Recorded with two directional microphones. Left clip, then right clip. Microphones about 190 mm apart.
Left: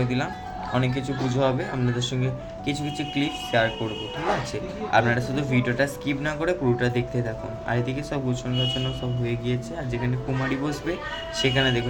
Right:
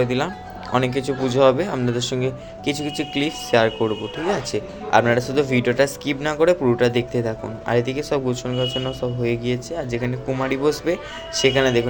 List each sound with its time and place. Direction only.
0.0 s speech: 40° right (ahead or behind)